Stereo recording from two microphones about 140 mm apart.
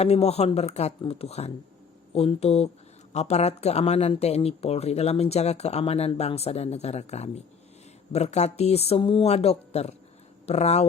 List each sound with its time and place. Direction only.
0.0 s speech: 50° left (ahead or behind)